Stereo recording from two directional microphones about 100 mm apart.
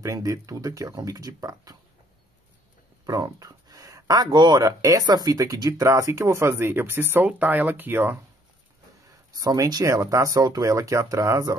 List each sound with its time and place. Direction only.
0.0 s speech: 30° right (ahead or behind)
3.1 s speech: 35° right (ahead or behind)
4.6 s speech: 35° right (ahead or behind); by 8.2 s 20° right (ahead or behind)
9.4 s speech: 40° right (ahead or behind)